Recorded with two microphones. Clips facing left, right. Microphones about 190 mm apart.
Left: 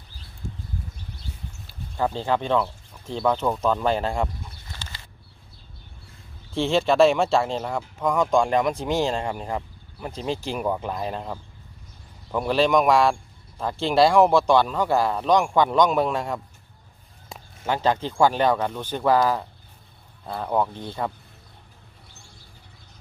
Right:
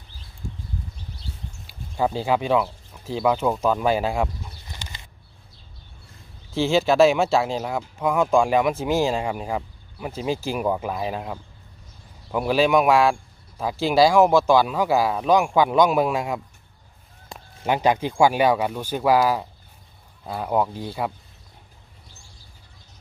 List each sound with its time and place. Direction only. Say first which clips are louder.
1.7 s speech: right 2 dB; 10° right (ahead or behind)
4.6 s bird: right 1 dB; 15° right (ahead or behind)
6.5 s speech: right 1 dB; 5° right (ahead or behind)
17.3 s a sound: right 1 dB; centre (ahead or behind)
17.6 s speech: right 2 dB; 15° right (ahead or behind)